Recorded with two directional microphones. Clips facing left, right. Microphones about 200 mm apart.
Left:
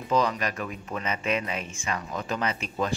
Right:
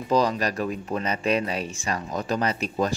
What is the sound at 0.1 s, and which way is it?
Speech, 35° right (ahead or behind).